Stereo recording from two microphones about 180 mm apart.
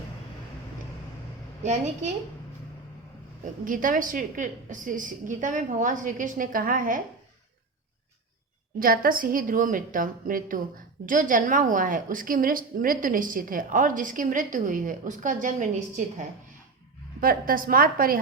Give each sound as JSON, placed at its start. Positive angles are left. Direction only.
{"t": 1.6, "sound": "a woman's voice", "side_deg": -40}
{"t": 3.4, "sound": "a woman's voice", "side_deg": -50}
{"t": 8.8, "sound": "a woman's voice", "side_deg": -50}